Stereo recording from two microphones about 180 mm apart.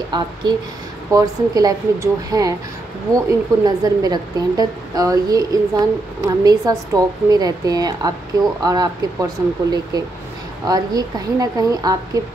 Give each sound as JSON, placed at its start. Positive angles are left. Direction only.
{"t": 0.1, "sound": "a woman's voice", "side_deg": -25}